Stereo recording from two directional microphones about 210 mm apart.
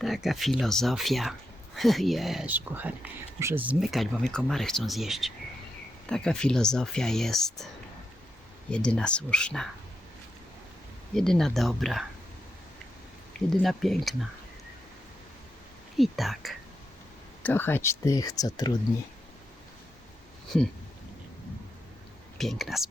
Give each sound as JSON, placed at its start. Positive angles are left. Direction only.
{"t": 0.0, "sound": "speech", "side_deg": 0}
{"t": 8.7, "sound": "speech", "side_deg": 5}
{"t": 11.1, "sound": "speech", "side_deg": 0}
{"t": 13.5, "sound": "speech", "side_deg": 0}
{"t": 16.0, "sound": "speech", "side_deg": 0}
{"t": 22.4, "sound": "speech", "side_deg": 0}